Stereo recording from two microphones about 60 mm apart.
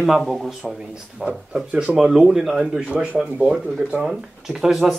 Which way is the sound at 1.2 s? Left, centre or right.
Centre.